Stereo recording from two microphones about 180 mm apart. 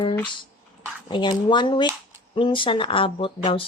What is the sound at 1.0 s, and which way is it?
A woman's voice, 25° left (ahead or behind).